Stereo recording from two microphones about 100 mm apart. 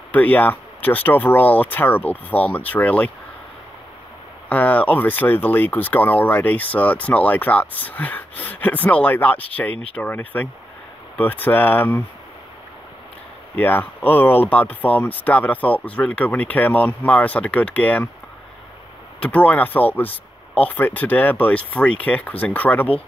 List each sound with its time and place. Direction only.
0.1 s speech: 15° left (ahead or behind)
4.5 s speech: 15° left (ahead or behind)
13.6 s speech: 15° left (ahead or behind)
19.2 s speech: 15° left (ahead or behind)